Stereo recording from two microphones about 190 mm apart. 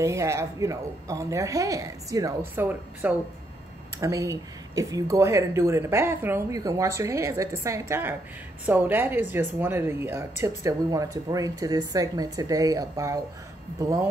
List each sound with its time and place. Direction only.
0.0 s speech: 15° right (ahead or behind)